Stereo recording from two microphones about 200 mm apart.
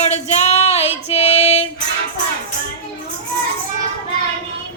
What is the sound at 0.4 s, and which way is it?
Child singing, 30° left (ahead or behind).